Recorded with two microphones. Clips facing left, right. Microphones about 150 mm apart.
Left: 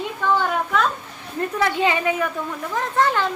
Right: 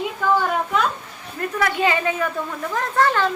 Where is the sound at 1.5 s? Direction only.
20° left (ahead or behind).